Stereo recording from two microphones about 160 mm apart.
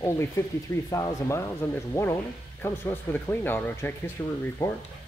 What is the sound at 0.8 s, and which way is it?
A man's voice, 20° left (ahead or behind).